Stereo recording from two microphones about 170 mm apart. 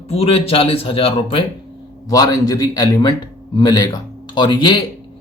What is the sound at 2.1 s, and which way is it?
Speech, 20° left (ahead or behind).